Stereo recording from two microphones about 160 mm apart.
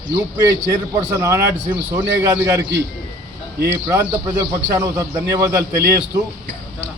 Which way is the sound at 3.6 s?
15° right (ahead or behind).